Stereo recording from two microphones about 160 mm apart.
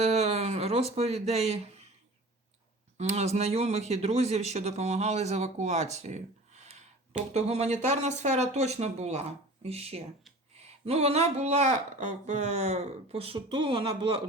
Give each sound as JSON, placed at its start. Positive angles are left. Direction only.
{"t": 0.0, "sound": "speech", "side_deg": -40}
{"t": 3.0, "sound": "speech", "side_deg": -45}